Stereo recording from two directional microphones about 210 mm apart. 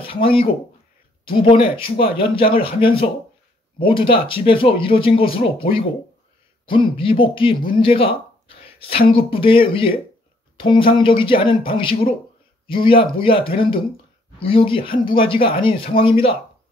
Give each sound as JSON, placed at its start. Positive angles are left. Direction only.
{"t": 0.0, "sound": "speech", "side_deg": 25}